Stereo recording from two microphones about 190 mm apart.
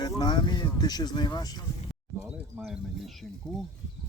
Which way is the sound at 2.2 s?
5° right (ahead or behind).